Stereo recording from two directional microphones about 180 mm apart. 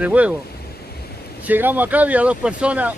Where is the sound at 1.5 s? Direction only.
10° right (ahead or behind).